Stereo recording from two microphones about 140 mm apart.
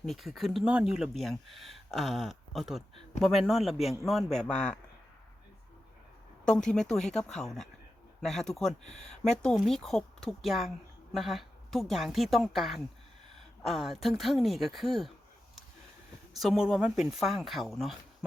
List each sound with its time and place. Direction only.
0.0 s speech: centre (ahead or behind)
6.4 s speech: 5° left (ahead or behind)
9.0 s speech: 55° left (ahead or behind)
9.4 s speech: 5° left (ahead or behind)
16.3 s speech: centre (ahead or behind)